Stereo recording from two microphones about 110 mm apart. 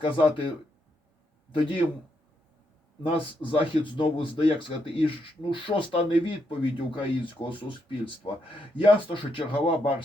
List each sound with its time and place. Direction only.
0.0 s speech: 50° left (ahead or behind)
1.5 s speech: 50° left (ahead or behind)
3.1 s speech: 55° left (ahead or behind)